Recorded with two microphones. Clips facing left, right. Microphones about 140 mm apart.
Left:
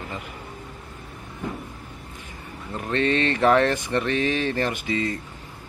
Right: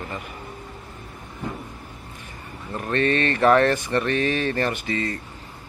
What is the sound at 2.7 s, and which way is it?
Speech, 15° left (ahead or behind).